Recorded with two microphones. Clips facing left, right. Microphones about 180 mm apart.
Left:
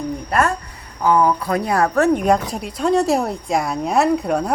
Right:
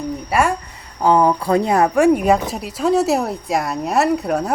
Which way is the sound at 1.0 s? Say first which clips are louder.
Right 2 dB; 30° right (ahead or behind).